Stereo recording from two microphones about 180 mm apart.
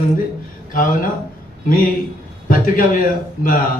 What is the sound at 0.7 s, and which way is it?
Speech, 50° left (ahead or behind).